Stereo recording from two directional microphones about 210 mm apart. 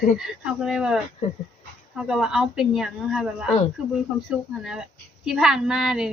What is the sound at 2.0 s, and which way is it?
A woman's voice, 5° right (ahead or behind).